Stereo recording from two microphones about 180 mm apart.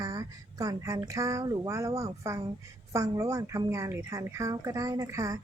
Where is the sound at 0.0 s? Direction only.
20° right (ahead or behind).